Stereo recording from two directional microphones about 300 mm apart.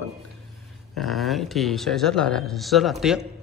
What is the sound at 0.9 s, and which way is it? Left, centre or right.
A man's voice, centre.